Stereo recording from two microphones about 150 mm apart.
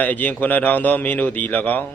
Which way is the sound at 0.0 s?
10° left (ahead or behind).